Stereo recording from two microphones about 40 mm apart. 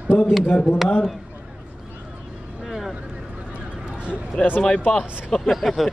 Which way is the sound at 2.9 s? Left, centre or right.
Right.